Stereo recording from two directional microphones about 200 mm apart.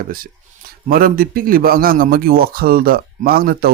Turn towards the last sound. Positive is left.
turn(degrees=-50)  # may be behind; listen again after turning